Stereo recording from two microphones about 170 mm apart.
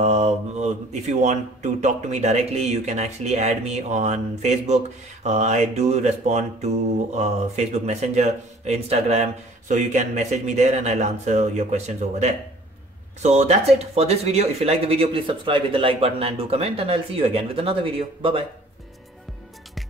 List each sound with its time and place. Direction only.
0.0 s speech: 40° right (ahead or behind)